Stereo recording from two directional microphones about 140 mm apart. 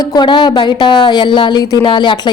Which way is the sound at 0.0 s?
30° left (ahead or behind).